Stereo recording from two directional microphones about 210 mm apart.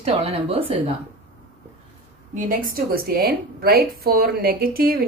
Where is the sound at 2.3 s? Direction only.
40° right (ahead or behind).